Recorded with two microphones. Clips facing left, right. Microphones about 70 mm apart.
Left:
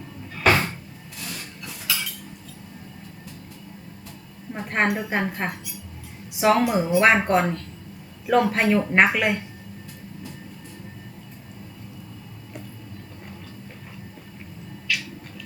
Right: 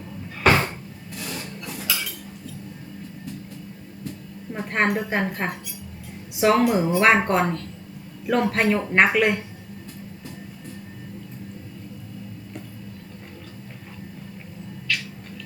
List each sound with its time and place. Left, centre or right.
0.4 s cupboard open or close: centre
4.5 s speech: centre
14.9 s cat: centre